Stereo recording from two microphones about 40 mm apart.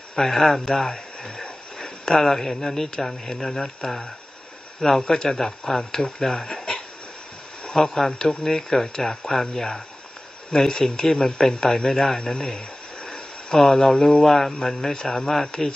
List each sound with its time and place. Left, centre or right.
0.2 s speech: centre
12.2 s a sound: centre
14.2 s speech: centre